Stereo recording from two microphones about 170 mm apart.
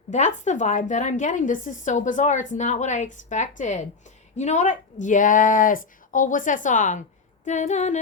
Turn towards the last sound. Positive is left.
turn(degrees=45)  # may be behind; listen again after turning